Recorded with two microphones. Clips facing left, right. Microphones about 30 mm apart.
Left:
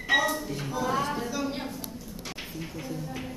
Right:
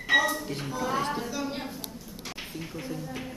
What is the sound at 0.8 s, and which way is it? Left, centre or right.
Music, centre.